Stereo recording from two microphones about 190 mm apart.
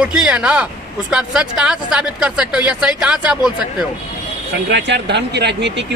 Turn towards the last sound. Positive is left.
turn(degrees=-65)  # may be behind; listen again after turning